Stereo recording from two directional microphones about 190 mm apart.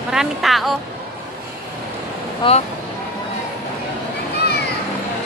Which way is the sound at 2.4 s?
30° left (ahead or behind).